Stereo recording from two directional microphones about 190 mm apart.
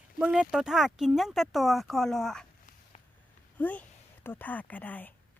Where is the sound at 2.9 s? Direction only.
35° left (ahead or behind).